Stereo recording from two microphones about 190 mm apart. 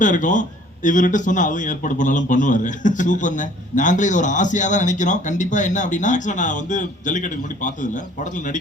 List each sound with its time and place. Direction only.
0.0 s a man's voice: 40° left (ahead or behind)